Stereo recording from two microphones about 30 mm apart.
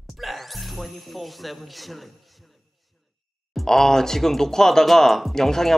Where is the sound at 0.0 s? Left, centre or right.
Centre.